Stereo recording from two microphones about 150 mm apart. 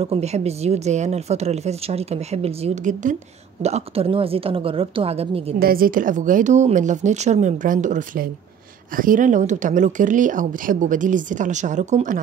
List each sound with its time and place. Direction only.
0.0 s speech: 45° right (ahead or behind)
3.6 s a woman's voice: 45° right (ahead or behind)
5.6 s speech: 75° right (ahead or behind); by 12.2 s 55° right (ahead or behind)